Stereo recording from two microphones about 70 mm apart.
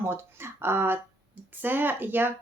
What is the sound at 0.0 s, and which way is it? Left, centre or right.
Speech, right.